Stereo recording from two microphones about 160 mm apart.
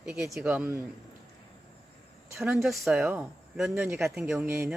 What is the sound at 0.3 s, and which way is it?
Speech, 10° right (ahead or behind).